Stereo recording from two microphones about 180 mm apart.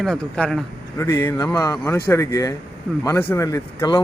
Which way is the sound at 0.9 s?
15° left (ahead or behind).